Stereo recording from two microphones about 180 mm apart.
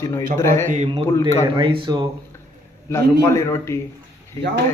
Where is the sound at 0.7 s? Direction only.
40° right (ahead or behind).